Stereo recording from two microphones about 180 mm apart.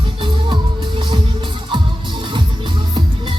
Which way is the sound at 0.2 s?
25° right (ahead or behind).